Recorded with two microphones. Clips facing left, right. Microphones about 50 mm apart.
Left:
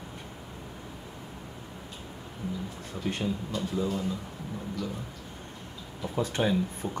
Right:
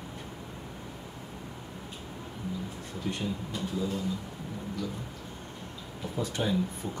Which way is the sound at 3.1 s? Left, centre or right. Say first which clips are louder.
Left 2 dB; left.